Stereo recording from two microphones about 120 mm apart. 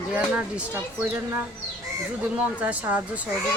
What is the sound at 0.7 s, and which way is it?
Speech, 20° right (ahead or behind).